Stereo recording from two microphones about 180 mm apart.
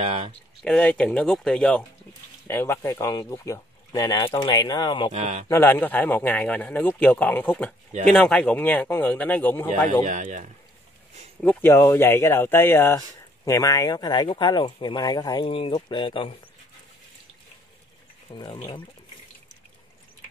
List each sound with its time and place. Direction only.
0.0 s speech: 35° right (ahead or behind)
0.7 s speech: 5° left (ahead or behind)
2.4 s speech: 15° left (ahead or behind)
5.1 s speech: 40° right (ahead or behind)
5.5 s speech: 10° left (ahead or behind)
10.0 s speech: 45° right (ahead or behind)
11.4 s speech: 15° left (ahead or behind)
18.3 s speech: 25° left (ahead or behind)